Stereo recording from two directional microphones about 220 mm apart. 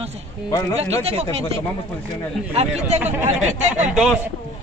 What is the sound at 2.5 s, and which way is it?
A woman's voice, 25° right (ahead or behind).